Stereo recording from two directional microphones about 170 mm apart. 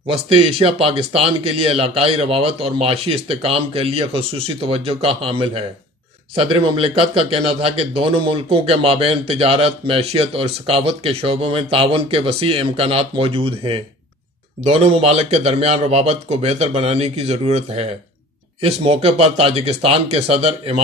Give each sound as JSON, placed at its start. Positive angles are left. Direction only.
{"t": 0.1, "sound": "a man's voice", "side_deg": -35}